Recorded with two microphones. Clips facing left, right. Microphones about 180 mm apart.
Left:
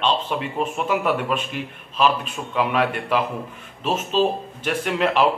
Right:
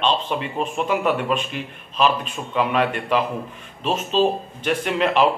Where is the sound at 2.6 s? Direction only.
5° left (ahead or behind).